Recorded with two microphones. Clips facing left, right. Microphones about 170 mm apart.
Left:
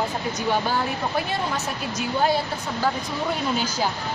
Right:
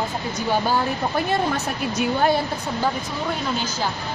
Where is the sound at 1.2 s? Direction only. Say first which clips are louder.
Right 4 dB; 55° right (ahead or behind).